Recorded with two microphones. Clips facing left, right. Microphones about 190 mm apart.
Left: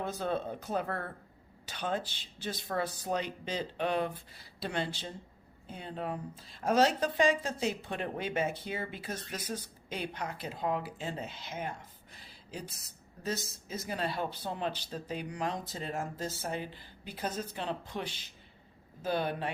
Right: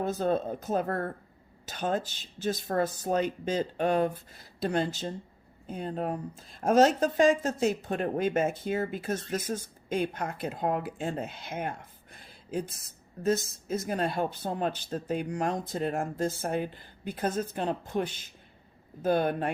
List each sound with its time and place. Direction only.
0.0 s a woman's voice: 40° right (ahead or behind)
12.1 s a sound: 50° right (ahead or behind)
13.2 s a woman's voice: 50° right (ahead or behind)